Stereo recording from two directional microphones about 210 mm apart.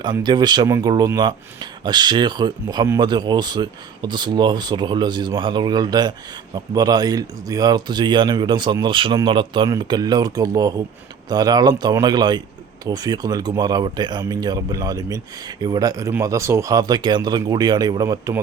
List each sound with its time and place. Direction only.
0.0 s speech: 20° right (ahead or behind)